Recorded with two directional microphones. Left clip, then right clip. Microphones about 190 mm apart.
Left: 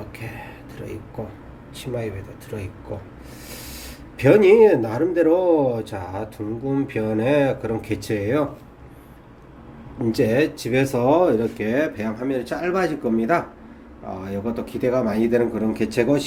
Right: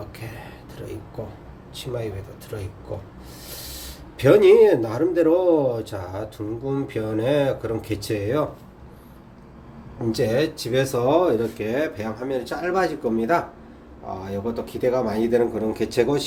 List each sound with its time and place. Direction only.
1.7 s a man's voice: 5° left (ahead or behind)
4.2 s speech: 5° left (ahead or behind)
10.1 s speech: 15° left (ahead or behind)